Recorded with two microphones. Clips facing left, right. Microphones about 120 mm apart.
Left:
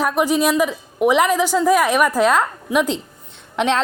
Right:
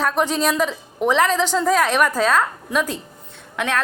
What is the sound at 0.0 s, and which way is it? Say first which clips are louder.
A woman's voice: left 2 dB; 10° left (ahead or behind).